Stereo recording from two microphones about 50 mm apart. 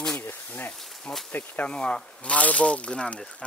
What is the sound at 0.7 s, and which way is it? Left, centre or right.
Speech, centre.